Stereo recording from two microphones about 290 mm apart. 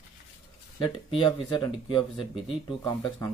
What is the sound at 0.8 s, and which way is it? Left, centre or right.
Speech, centre.